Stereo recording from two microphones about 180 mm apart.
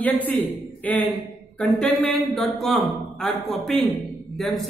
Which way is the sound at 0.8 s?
10° left (ahead or behind).